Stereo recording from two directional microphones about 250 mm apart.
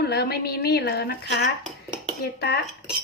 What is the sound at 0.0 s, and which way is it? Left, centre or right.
A woman's voice, left.